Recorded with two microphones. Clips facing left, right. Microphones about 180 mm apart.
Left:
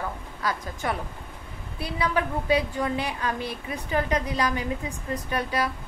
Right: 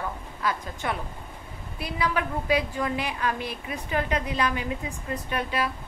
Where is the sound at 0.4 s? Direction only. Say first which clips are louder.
Even; 35° left (ahead or behind).